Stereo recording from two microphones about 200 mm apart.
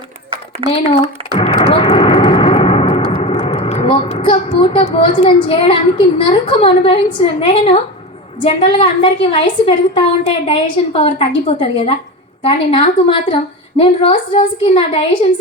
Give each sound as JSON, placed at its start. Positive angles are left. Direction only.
{"t": 0.6, "sound": "speech", "side_deg": -25}
{"t": 1.4, "sound": "a sound", "side_deg": 25}
{"t": 3.1, "sound": "a woman's voice", "side_deg": 30}